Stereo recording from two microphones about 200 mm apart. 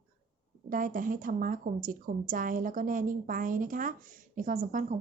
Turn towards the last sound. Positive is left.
turn(degrees=-40)  # may be behind; listen again after turning